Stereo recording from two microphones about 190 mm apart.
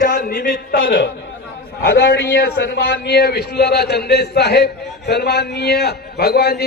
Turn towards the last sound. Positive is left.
turn(degrees=60)  # may be behind; listen again after turning